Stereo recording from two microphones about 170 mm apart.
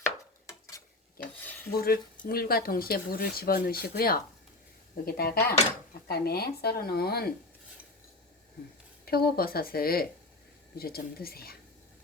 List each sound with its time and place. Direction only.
1.2 s cutlery: 60° left (ahead or behind)
1.7 s speech: 60° left (ahead or behind)
9.0 s speech: 65° left (ahead or behind)